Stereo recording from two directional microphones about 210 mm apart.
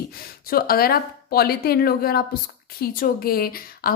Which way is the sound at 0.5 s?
45° left (ahead or behind).